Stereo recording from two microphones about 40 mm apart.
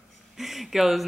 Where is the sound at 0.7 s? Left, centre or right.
Centre.